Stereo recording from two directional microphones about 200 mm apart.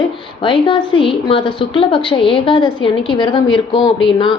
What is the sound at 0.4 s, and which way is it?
A woman's voice, 25° left (ahead or behind).